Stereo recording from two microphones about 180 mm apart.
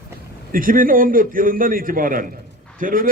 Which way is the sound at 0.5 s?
50° right (ahead or behind).